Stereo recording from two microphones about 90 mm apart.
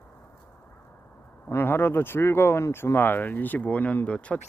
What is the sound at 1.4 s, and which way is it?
Speech, 25° left (ahead or behind).